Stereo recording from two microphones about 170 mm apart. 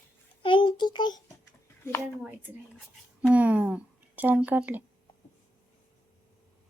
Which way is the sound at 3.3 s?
10° right (ahead or behind).